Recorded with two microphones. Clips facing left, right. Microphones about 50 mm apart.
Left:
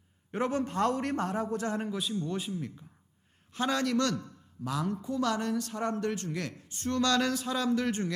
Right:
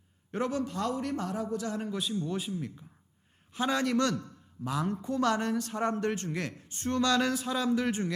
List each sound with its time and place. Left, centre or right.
0.3 s a man's voice: centre
0.5 s a man's voice: left
1.9 s a man's voice: centre; by 4.9 s right
5.0 s speech: right; by 8.1 s centre